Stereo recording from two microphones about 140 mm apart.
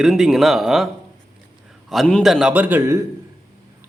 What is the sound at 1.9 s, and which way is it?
Speech, centre (ahead or behind).